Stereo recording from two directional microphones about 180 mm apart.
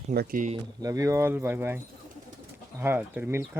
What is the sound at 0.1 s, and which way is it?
Speech, 55° right (ahead or behind).